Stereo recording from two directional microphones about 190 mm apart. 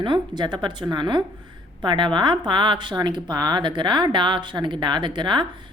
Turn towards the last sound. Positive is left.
turn(degrees=-25)  # may be behind; listen again after turning